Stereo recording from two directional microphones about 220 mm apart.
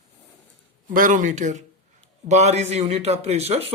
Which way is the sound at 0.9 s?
35° right (ahead or behind).